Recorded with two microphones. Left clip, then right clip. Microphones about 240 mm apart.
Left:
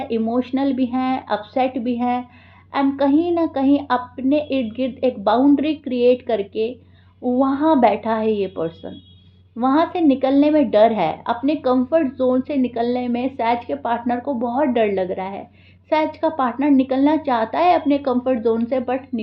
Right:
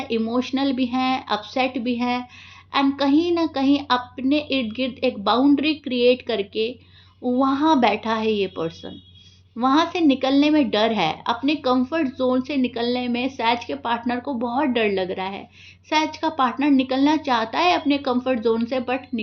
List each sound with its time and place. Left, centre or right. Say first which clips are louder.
0.0 s a woman's voice: left 2 dB; right